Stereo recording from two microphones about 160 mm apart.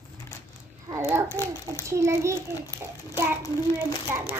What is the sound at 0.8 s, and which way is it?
Child singing, 15° right (ahead or behind).